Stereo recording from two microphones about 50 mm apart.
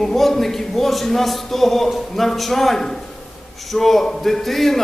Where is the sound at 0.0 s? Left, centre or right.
Centre.